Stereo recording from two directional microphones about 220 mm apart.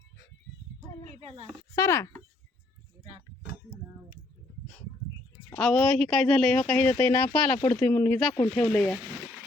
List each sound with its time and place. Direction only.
1.2 s a woman's voice: 25° right (ahead or behind)
1.7 s speech: 15° left (ahead or behind)
5.5 s speech: 5° left (ahead or behind)